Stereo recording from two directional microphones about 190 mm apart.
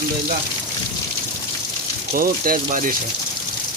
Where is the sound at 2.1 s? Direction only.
50° right (ahead or behind).